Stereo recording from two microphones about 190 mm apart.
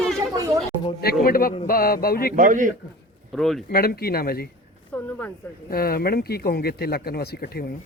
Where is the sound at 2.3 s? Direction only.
45° right (ahead or behind).